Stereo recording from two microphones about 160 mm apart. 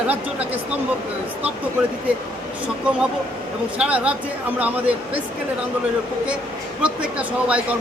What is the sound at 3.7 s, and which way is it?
Speech, 5° right (ahead or behind).